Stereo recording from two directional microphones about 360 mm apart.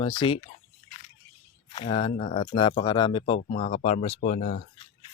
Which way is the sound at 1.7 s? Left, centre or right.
Centre.